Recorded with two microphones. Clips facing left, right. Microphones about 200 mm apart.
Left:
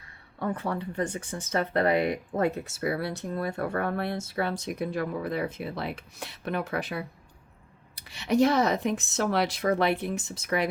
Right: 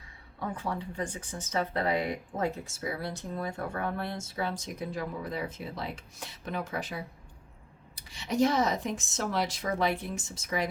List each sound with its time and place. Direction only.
0.3 s speech: 60° left (ahead or behind)